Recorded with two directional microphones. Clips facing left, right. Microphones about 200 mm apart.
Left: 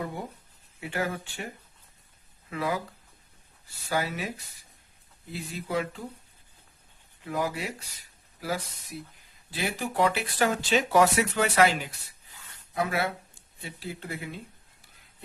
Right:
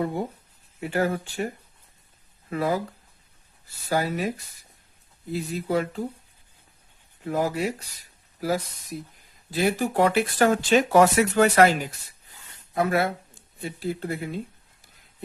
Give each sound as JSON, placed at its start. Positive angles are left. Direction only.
{"t": 0.8, "sound": "speech", "side_deg": -40}
{"t": 2.5, "sound": "speech", "side_deg": -40}
{"t": 3.8, "sound": "speech", "side_deg": -40}
{"t": 7.3, "sound": "speech", "side_deg": -40}